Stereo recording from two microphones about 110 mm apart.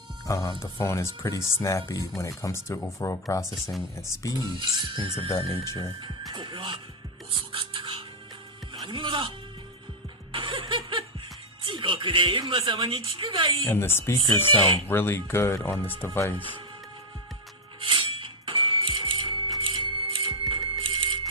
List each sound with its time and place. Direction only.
0.3 s speech: 30° left (ahead or behind)
3.5 s speech: centre (ahead or behind)
3.9 s speech: 30° left (ahead or behind)
4.6 s speech: 40° right (ahead or behind)
7.5 s music: 55° right (ahead or behind)
8.7 s speech: 45° right (ahead or behind)
10.3 s music: 50° right (ahead or behind)
12.5 s speech: 55° right (ahead or behind)
13.7 s speech: 20° left (ahead or behind)
17.7 s music: 55° right (ahead or behind)